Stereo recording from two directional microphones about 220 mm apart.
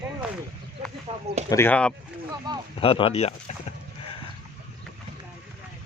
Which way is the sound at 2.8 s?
25° left (ahead or behind).